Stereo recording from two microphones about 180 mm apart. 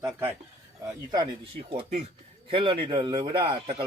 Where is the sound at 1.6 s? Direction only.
30° right (ahead or behind).